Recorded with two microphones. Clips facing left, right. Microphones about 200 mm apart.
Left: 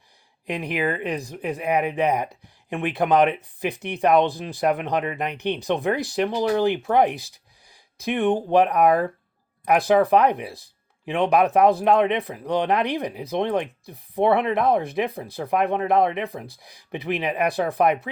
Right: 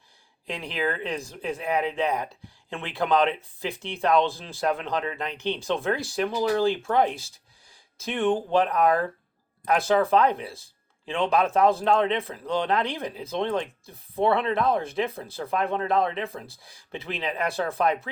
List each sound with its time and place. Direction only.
0.4 s speech: 20° left (ahead or behind)